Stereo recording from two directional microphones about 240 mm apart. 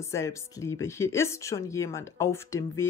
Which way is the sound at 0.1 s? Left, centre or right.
Centre.